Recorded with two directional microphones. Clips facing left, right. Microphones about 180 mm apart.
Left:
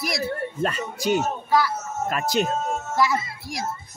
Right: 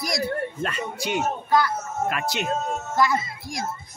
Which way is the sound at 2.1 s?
40° left (ahead or behind).